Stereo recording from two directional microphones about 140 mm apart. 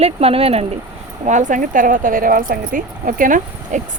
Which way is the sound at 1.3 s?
65° right (ahead or behind).